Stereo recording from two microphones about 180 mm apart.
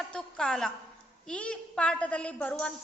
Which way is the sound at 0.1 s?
5° left (ahead or behind).